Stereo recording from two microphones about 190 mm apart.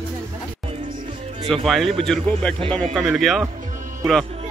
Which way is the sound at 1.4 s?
Centre (ahead or behind).